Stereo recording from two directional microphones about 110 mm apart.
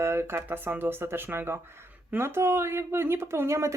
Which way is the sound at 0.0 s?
25° right (ahead or behind).